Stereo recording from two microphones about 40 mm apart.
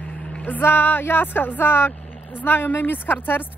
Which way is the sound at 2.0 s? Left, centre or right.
Left.